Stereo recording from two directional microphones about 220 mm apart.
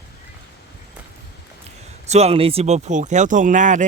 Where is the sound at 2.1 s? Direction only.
30° right (ahead or behind).